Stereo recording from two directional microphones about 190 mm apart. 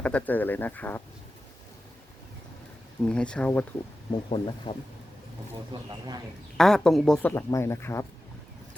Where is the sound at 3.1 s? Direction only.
5° left (ahead or behind).